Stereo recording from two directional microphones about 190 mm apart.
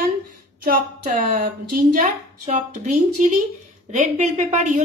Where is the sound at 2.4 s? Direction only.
45° right (ahead or behind).